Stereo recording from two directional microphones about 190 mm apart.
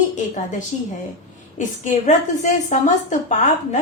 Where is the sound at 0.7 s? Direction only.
35° left (ahead or behind).